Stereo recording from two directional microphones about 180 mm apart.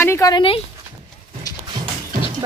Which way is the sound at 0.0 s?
15° left (ahead or behind).